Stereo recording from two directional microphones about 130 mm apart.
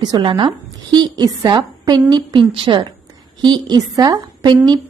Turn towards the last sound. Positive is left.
turn(degrees=-30)  # may be behind; listen again after turning